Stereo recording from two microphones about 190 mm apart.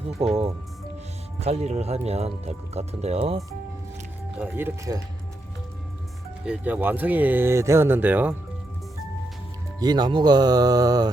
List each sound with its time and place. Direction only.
0.2 s speech: 30° right (ahead or behind)
4.4 s speech: 10° right (ahead or behind)
6.4 s speech: 5° right (ahead or behind)
9.8 s speech: 20° right (ahead or behind)